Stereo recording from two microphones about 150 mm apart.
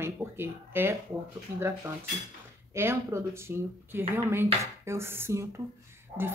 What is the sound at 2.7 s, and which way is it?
A woman's voice, 15° right (ahead or behind).